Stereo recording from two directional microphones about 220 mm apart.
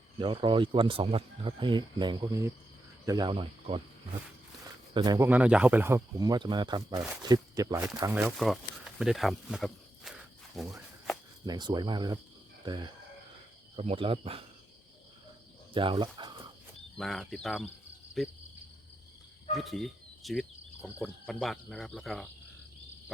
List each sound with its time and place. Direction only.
0.2 s speech: 20° right (ahead or behind)
4.9 s speech: 15° right (ahead or behind); by 10.2 s centre (ahead or behind)
11.4 s speech: 20° right (ahead or behind)
15.7 s speech: 25° right (ahead or behind)
17.0 s speech: centre (ahead or behind)
19.5 s speech: centre (ahead or behind)